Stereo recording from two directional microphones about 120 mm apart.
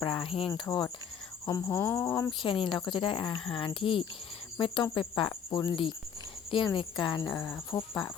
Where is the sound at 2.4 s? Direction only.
45° left (ahead or behind).